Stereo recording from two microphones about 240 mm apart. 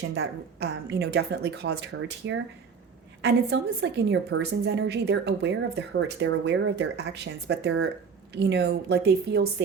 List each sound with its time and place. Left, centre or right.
0.1 s a woman's voice: right